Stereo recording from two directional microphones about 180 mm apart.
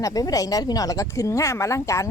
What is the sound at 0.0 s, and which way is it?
A woman's voice, 20° left (ahead or behind).